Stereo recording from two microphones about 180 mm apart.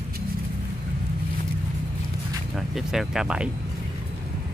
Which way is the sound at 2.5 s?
Centre (ahead or behind).